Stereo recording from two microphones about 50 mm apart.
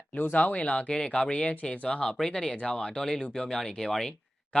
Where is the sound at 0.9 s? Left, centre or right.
Centre.